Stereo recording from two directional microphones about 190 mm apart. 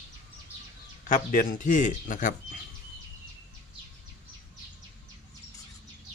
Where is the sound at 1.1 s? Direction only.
45° left (ahead or behind).